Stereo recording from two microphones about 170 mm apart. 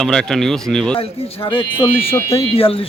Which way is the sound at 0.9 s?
30° left (ahead or behind).